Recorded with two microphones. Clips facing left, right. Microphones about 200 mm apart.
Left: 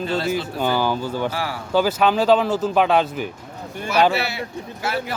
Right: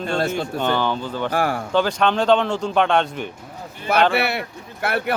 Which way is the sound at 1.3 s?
50° right (ahead or behind).